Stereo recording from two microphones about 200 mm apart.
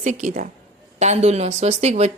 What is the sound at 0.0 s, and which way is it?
Speech, 35° right (ahead or behind).